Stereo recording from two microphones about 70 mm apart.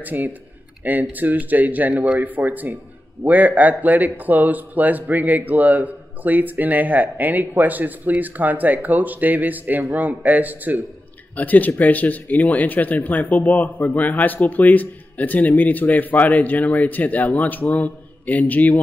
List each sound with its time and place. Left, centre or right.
0.0 s a man's voice: right
11.3 s speech: left